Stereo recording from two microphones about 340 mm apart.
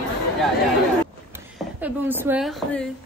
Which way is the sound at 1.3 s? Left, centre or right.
Centre.